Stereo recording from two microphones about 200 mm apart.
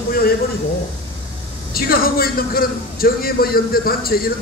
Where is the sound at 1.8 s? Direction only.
50° left (ahead or behind).